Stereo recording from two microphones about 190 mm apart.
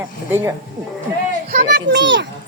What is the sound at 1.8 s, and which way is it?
Speech, 70° right (ahead or behind).